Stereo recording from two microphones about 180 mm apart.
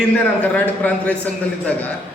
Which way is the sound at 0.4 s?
10° left (ahead or behind).